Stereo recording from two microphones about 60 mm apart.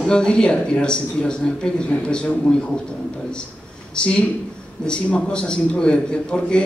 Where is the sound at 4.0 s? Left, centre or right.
Centre.